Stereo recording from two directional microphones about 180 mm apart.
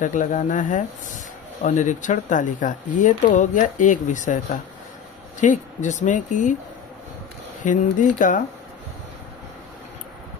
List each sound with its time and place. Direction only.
0.0 s speech: 45° left (ahead or behind)
7.6 s speech: 45° left (ahead or behind)